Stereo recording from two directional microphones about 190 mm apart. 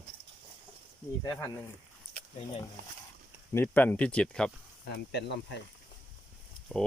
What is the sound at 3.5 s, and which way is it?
Speech, 10° left (ahead or behind).